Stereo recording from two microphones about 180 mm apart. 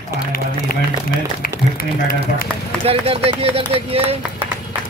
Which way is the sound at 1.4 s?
55° left (ahead or behind).